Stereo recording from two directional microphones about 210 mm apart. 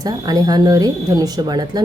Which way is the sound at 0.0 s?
15° right (ahead or behind).